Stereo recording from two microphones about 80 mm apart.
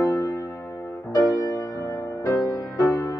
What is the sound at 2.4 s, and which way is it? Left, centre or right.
Music, left.